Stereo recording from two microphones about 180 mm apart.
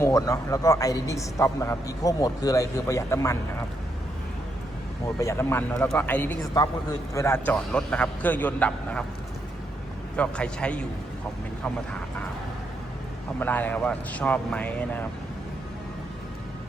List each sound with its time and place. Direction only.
0.0 s a man's voice: 20° left (ahead or behind)
5.0 s a man's voice: 15° left (ahead or behind)
10.2 s a man's voice: 5° left (ahead or behind)
13.4 s a man's voice: 10° left (ahead or behind)